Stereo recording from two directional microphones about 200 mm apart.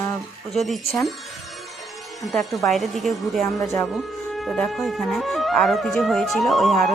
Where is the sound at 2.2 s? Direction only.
Centre (ahead or behind).